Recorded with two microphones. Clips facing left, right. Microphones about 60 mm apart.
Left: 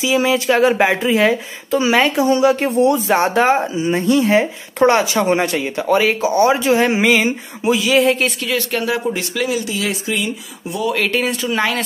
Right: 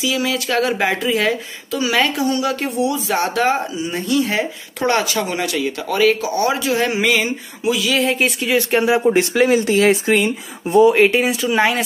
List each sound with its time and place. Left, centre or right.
0.0 s speech: left
8.0 s speech: centre
8.4 s speech: centre; by 10.8 s right
10.8 s speech: right
11.1 s speech: centre